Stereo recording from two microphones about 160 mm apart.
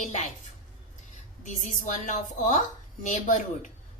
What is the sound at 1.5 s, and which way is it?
A woman's voice, 50° left (ahead or behind).